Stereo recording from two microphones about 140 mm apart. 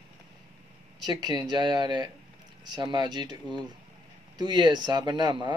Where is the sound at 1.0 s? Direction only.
30° right (ahead or behind).